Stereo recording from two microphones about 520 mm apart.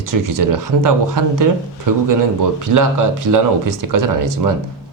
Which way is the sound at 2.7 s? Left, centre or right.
Right.